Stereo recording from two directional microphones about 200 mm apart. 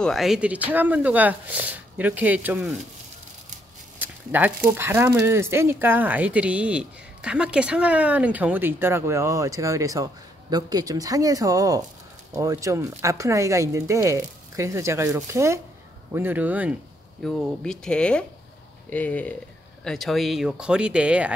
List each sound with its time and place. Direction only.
0.0 s speech: centre (ahead or behind)
4.0 s speech: 10° right (ahead or behind)
17.2 s speech: 5° left (ahead or behind)